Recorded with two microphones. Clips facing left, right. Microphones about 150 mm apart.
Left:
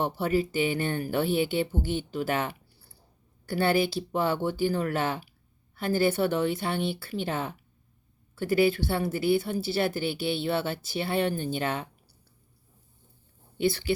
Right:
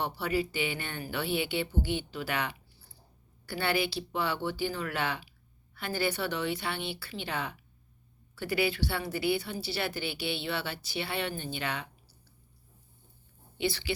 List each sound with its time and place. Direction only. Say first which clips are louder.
0.0 s speech: left 5 dB; 45° left (ahead or behind)
13.6 s speech: left 6 dB; 50° left (ahead or behind)